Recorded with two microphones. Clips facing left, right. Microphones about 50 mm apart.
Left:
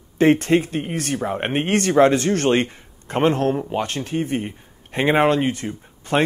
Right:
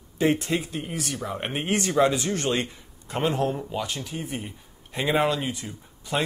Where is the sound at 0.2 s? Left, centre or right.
Left.